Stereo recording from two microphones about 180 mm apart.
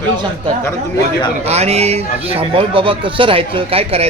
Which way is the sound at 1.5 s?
35° right (ahead or behind).